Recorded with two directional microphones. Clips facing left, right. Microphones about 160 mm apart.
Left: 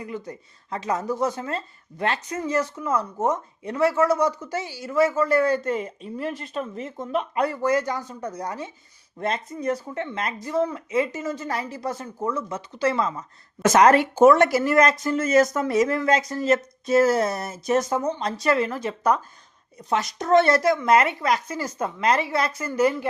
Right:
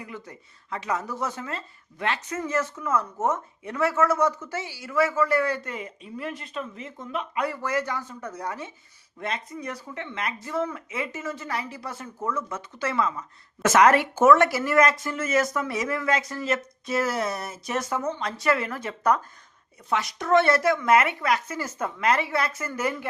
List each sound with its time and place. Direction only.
0.0 s speech: 35° left (ahead or behind)
14.4 s a woman's voice: 20° left (ahead or behind)
14.8 s a woman's voice: 40° left (ahead or behind)
19.9 s a woman's voice: 45° left (ahead or behind)